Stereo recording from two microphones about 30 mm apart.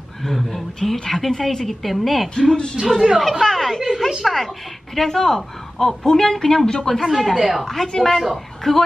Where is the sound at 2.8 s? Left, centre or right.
Right.